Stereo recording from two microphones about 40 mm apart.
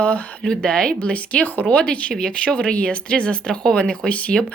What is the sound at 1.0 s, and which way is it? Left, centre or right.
Speech, left.